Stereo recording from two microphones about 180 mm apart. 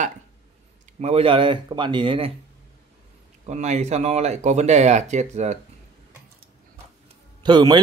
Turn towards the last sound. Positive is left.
turn(degrees=-25)  # may be behind; listen again after turning